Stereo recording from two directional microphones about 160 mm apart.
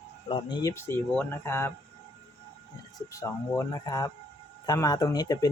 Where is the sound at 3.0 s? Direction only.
20° left (ahead or behind).